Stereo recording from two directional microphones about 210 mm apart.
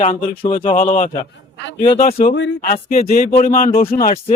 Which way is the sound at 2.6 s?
40° left (ahead or behind).